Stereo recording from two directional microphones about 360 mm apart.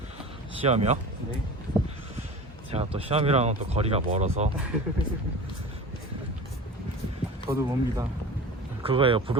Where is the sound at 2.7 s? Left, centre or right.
Centre.